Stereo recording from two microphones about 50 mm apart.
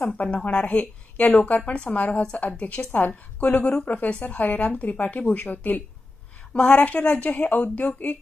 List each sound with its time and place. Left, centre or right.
0.1 s a woman's voice: left
2.2 s a woman's voice: left
6.5 s a woman's voice: left